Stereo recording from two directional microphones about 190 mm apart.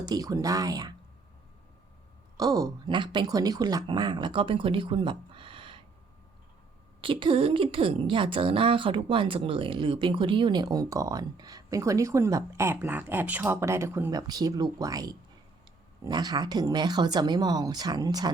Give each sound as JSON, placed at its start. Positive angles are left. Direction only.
{"t": 0.0, "sound": "a woman's voice", "side_deg": -20}
{"t": 2.4, "sound": "a woman's voice", "side_deg": -20}
{"t": 7.0, "sound": "a woman's voice", "side_deg": -25}